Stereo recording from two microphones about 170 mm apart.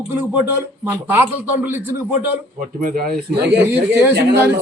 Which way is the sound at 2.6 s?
60° right (ahead or behind).